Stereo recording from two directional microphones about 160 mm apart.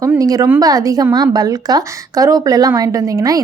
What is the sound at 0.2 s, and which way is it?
A woman's voice, 20° right (ahead or behind).